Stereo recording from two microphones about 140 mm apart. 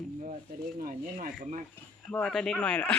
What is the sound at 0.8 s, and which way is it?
Speech, 80° right.